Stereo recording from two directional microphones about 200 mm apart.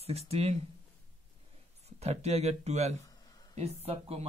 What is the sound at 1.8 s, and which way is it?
Speech, 35° right (ahead or behind).